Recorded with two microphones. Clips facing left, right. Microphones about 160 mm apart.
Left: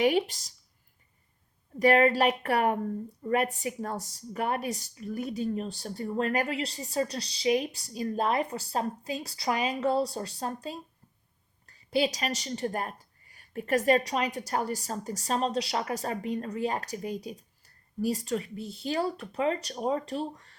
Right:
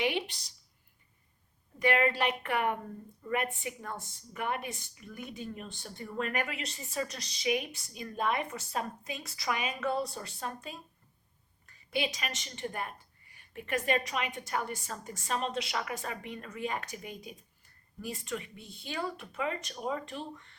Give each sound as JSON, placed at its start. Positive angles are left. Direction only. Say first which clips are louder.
{"t": 0.0, "sound": "a woman's voice", "louder": "left 7 dB", "side_deg": 40}
{"t": 1.8, "sound": "a woman's voice", "louder": "left 6 dB", "side_deg": 40}